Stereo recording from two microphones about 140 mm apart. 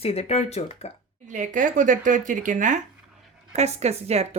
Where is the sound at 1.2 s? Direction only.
60° right (ahead or behind).